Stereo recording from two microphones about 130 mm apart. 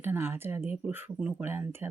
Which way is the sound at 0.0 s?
15° right (ahead or behind).